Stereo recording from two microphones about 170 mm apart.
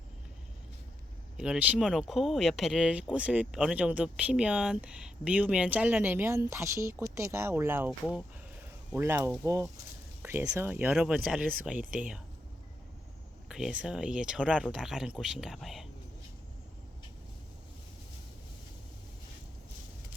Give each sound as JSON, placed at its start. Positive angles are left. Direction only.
{"t": 1.4, "sound": "speech", "side_deg": -5}
{"t": 13.5, "sound": "speech", "side_deg": -5}